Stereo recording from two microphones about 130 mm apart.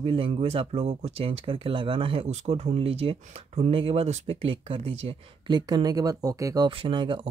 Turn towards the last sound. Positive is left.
turn(degrees=-40)  # may be behind; listen again after turning